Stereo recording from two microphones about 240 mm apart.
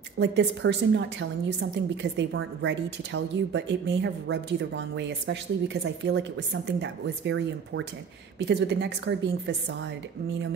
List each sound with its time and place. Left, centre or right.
0.2 s a woman's voice: right